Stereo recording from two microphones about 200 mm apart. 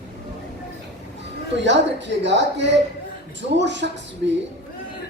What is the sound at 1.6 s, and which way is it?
A woman's voice, 60° right (ahead or behind).